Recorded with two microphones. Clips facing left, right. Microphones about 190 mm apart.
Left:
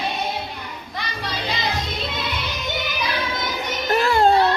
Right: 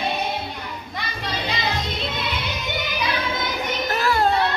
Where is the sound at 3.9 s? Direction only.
25° left (ahead or behind).